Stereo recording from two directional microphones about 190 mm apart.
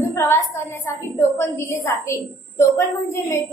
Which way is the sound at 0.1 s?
15° left (ahead or behind).